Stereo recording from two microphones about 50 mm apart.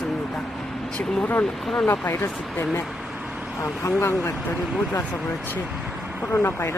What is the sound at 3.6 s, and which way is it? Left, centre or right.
Speech, left.